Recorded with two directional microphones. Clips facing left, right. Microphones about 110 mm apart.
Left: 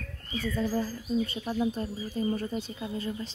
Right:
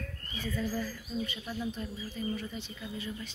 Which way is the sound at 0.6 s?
30° left (ahead or behind).